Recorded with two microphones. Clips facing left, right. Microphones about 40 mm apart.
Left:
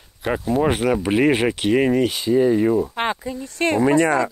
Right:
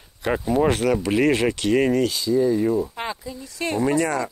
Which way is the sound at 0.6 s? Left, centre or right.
Centre.